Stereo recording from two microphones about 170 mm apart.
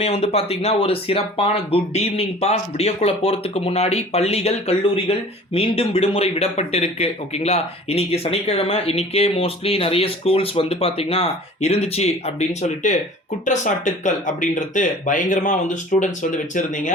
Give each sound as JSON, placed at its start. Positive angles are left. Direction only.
{"t": 0.0, "sound": "speech", "side_deg": 35}